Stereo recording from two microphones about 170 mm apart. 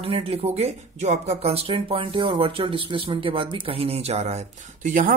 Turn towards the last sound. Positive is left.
turn(degrees=-50)  # may be behind; listen again after turning